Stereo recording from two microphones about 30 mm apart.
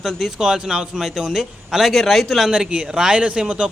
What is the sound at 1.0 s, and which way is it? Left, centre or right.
Speech, centre.